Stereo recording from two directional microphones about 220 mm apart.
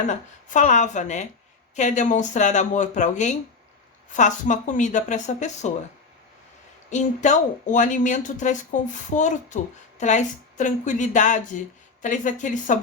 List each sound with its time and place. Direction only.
0.1 s speech: 35° left (ahead or behind)
6.9 s speech: 35° left (ahead or behind)